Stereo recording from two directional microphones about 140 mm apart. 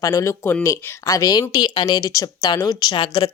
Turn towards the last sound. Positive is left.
turn(degrees=35)  # may be behind; listen again after turning